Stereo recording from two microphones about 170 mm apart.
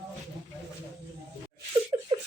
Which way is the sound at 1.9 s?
20° right (ahead or behind).